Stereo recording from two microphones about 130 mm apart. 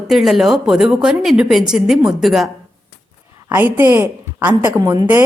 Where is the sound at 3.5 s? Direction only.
15° right (ahead or behind).